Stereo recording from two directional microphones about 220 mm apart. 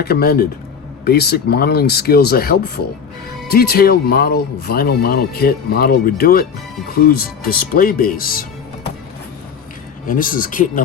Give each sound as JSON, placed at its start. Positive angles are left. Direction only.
{"t": 0.0, "sound": "speech", "side_deg": 45}
{"t": 10.1, "sound": "speech", "side_deg": 40}